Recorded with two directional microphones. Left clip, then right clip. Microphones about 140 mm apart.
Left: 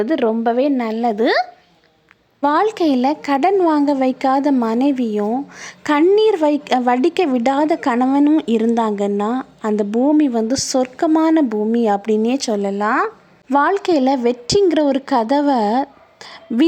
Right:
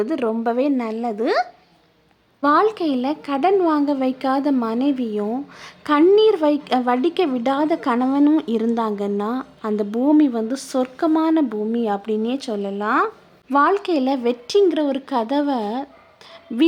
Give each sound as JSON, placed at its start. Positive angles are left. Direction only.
{"t": 0.0, "sound": "speech", "side_deg": 10}